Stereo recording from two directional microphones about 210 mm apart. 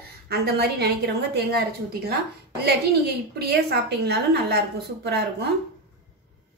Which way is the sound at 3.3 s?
50° right (ahead or behind).